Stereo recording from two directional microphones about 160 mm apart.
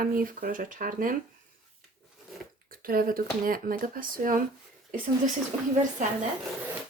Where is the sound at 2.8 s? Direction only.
65° right (ahead or behind).